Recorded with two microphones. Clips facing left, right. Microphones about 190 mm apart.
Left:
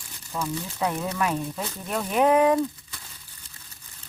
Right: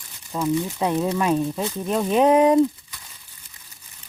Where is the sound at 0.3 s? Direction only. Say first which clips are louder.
Right 8 dB; 20° right (ahead or behind).